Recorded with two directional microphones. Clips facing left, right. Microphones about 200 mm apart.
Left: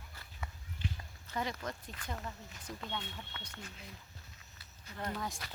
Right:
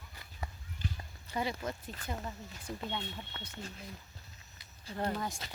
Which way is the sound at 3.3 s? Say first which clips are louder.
Right 3 dB; 35° right (ahead or behind).